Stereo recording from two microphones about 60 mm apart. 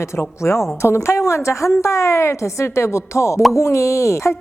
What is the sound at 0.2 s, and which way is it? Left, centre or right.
Speech, left.